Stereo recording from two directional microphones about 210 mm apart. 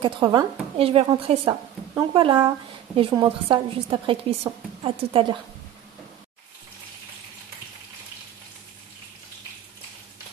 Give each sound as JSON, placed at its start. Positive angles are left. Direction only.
{"t": 0.0, "sound": "a woman's voice", "side_deg": -20}